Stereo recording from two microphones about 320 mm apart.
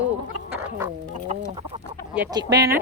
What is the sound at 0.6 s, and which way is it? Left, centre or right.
Chicken, centre.